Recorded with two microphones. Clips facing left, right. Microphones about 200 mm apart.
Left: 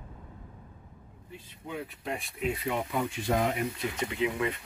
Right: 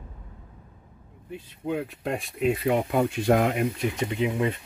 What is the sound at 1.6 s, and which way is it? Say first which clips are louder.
Speech: right 8 dB; 65° right (ahead or behind).